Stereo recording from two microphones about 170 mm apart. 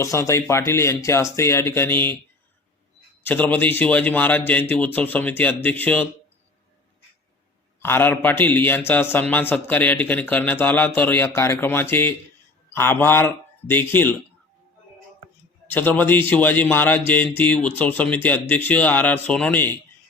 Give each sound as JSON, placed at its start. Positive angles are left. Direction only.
{"t": 0.0, "sound": "a man's voice", "side_deg": 15}
{"t": 3.2, "sound": "a man's voice", "side_deg": 10}
{"t": 7.8, "sound": "a man's voice", "side_deg": 15}
{"t": 15.6, "sound": "a man's voice", "side_deg": 10}